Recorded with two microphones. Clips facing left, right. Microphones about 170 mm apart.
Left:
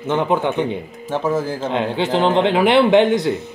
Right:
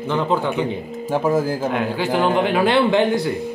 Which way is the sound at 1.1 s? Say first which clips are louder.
Right 1 dB; 10° right (ahead or behind).